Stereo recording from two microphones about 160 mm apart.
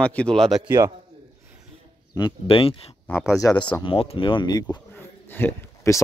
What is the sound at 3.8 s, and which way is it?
Speech, 35° left (ahead or behind).